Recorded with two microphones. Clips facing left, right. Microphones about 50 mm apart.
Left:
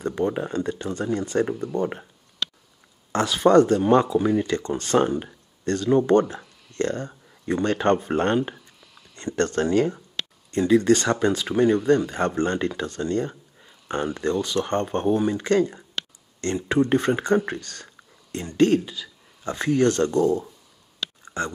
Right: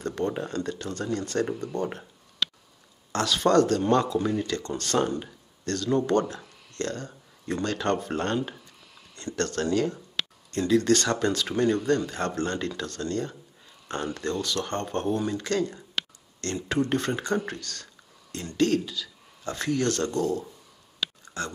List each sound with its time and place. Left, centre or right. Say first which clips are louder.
0.0 s speech: left 4 dB; centre
3.1 s speech: left 5 dB; centre